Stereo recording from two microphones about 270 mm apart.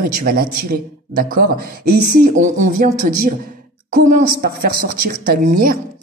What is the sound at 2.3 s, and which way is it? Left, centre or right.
Speech, right.